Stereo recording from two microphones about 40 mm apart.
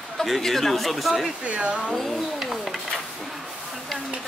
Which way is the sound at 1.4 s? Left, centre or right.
Right.